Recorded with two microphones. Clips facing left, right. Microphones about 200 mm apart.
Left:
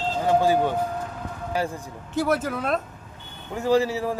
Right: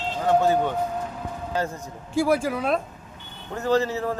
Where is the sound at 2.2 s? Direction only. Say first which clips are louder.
Right 2 dB; 5° right (ahead or behind).